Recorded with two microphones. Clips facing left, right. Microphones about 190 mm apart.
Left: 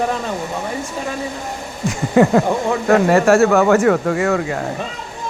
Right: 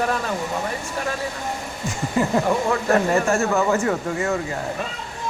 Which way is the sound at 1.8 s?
75° left (ahead or behind).